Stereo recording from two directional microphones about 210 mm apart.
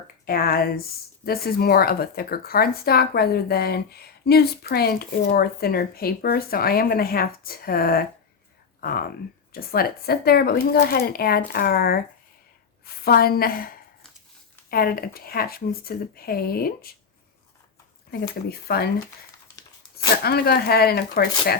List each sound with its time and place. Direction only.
0.3 s speech: 45° left (ahead or behind)
18.4 s speech: 50° left (ahead or behind)
20.2 s speech: 45° left (ahead or behind)